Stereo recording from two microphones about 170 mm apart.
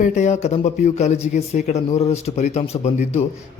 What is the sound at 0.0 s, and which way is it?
Speech, 45° left (ahead or behind).